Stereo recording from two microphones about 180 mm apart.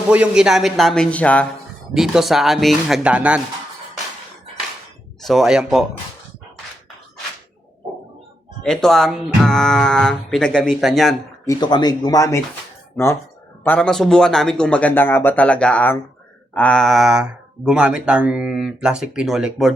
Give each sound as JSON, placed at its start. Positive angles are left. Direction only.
{"t": 0.1, "sound": "speech", "side_deg": -5}
{"t": 5.2, "sound": "speech", "side_deg": 0}
{"t": 8.6, "sound": "speech", "side_deg": 5}
{"t": 11.4, "sound": "speech", "side_deg": 25}
{"t": 13.7, "sound": "speech", "side_deg": 5}